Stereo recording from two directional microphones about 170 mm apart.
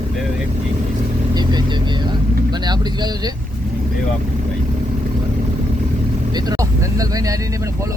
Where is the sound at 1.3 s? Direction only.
25° right (ahead or behind).